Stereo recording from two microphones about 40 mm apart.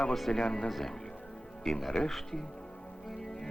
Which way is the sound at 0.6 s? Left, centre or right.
Centre.